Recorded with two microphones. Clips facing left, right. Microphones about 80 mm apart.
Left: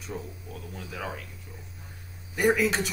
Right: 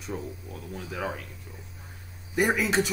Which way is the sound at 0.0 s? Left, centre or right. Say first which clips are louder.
Right 2 dB; centre.